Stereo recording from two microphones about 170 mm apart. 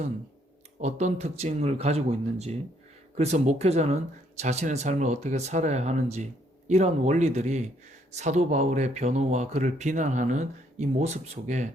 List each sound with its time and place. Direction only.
0.8 s speech: 40° right (ahead or behind)